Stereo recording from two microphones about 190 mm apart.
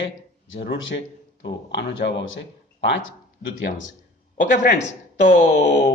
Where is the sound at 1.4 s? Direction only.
65° left (ahead or behind).